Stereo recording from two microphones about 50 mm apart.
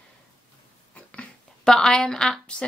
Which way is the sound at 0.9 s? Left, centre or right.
Left.